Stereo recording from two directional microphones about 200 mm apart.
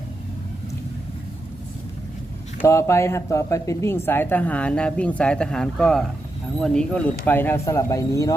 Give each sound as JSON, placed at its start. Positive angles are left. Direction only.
{"t": 2.6, "sound": "speech", "side_deg": 15}